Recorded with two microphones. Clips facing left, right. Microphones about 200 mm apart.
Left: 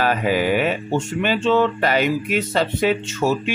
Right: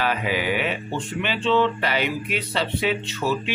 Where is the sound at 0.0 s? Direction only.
45° left (ahead or behind).